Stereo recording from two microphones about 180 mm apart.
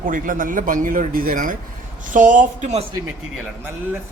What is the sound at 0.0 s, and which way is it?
A man's voice, 50° right (ahead or behind).